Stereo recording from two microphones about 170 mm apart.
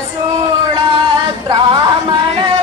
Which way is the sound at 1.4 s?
30° right (ahead or behind).